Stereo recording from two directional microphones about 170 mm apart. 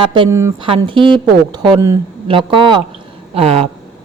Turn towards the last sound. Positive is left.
turn(degrees=-35)  # may be behind; listen again after turning